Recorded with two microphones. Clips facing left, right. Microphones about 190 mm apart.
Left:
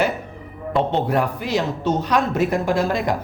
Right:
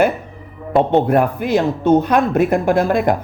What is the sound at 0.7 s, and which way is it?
Speech, 55° right (ahead or behind).